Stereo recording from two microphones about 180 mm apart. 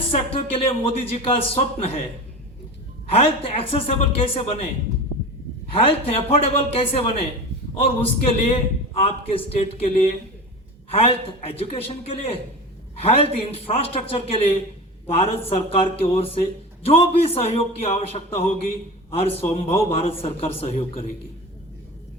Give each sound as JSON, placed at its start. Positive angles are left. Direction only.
{"t": 0.1, "sound": "a man's voice", "side_deg": 30}
{"t": 3.1, "sound": "a man's voice", "side_deg": 35}
{"t": 5.7, "sound": "a man's voice", "side_deg": 30}